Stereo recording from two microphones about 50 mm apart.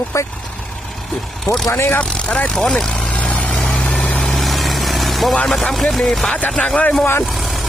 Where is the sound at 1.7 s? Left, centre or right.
Left.